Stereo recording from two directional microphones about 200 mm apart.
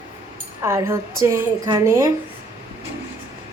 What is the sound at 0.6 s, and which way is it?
Speech, 15° right (ahead or behind).